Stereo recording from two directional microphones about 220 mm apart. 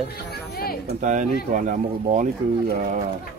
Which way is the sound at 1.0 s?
35° right (ahead or behind).